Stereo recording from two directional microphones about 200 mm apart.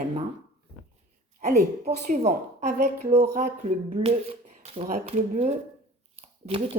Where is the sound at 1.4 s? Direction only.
40° right (ahead or behind).